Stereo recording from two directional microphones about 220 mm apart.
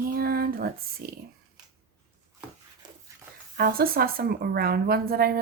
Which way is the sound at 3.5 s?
45° right (ahead or behind).